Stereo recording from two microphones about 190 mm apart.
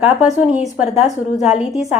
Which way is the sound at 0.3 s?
5° right (ahead or behind).